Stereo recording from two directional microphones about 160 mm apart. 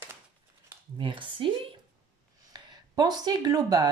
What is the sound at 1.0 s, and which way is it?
Cutlery, 30° right (ahead or behind).